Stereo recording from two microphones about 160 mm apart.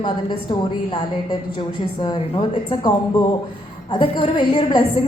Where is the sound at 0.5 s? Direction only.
30° left (ahead or behind).